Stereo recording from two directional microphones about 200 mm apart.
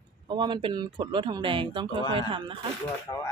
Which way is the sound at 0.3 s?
25° right (ahead or behind).